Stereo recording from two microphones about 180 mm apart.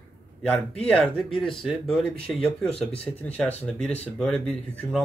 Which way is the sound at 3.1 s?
20° left (ahead or behind).